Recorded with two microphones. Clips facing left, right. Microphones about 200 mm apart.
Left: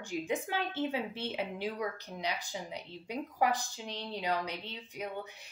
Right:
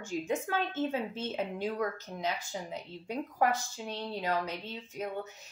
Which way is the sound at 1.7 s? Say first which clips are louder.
Right 3 dB; 45° right (ahead or behind).